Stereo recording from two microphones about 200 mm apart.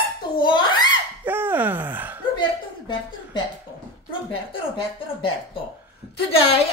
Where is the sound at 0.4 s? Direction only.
25° left (ahead or behind).